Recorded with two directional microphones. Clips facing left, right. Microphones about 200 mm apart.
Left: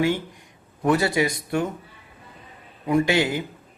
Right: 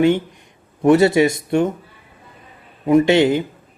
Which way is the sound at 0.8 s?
25° right (ahead or behind).